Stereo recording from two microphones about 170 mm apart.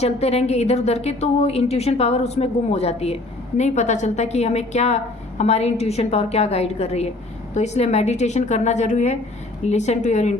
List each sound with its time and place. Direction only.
0.0 s a woman's voice: 40° left (ahead or behind)